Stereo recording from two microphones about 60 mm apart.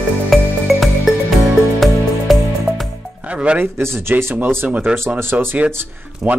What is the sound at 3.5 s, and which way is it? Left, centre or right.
Speech, right.